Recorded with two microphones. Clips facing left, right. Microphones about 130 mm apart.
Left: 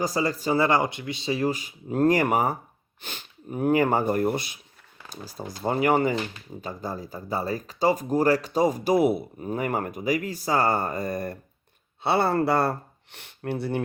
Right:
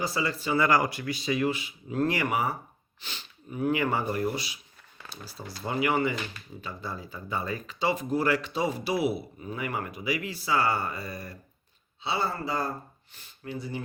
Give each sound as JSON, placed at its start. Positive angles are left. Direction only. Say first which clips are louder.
{"t": 0.0, "sound": "speech", "louder": "left 4 dB", "side_deg": 40}